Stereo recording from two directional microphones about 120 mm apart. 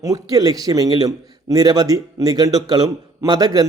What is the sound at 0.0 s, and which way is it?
A man's voice, 30° right (ahead or behind).